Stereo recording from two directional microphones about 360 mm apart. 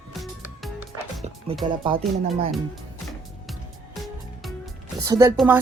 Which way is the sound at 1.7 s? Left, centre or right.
Centre.